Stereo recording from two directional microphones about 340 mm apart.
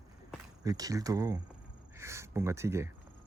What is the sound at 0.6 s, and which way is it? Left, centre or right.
Speech, centre.